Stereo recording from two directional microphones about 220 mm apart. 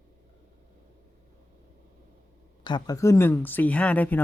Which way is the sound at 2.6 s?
20° left (ahead or behind).